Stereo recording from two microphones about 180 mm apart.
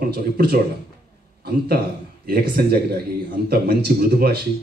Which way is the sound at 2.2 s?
60° right (ahead or behind).